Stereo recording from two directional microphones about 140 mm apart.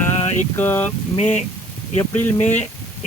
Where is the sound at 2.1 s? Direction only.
15° left (ahead or behind).